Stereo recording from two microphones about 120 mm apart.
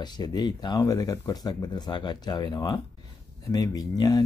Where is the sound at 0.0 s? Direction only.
35° left (ahead or behind).